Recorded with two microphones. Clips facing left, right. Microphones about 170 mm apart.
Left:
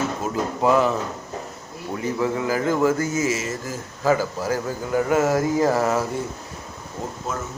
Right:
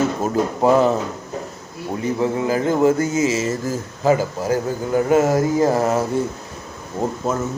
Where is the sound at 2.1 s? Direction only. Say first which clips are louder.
Right 3 dB; 25° right (ahead or behind).